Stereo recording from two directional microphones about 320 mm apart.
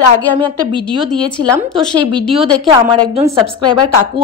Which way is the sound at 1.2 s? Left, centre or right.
Centre.